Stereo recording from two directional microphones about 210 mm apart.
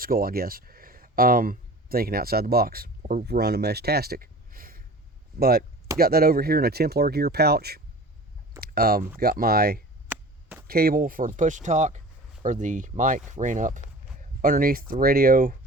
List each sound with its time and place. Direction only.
0.0 s speech: 45° right (ahead or behind)
10.1 s chop: 10° right (ahead or behind)
10.7 s speech: 45° right (ahead or behind)